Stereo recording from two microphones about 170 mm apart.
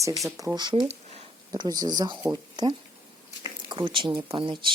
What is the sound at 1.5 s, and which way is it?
Speech, 25° right (ahead or behind).